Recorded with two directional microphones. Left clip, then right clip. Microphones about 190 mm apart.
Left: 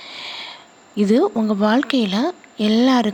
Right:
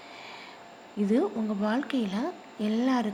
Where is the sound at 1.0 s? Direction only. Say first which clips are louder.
Left 10 dB; 35° left (ahead or behind).